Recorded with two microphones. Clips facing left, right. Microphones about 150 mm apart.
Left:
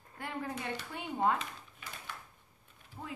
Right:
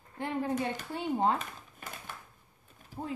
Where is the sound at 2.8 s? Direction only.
30° right (ahead or behind).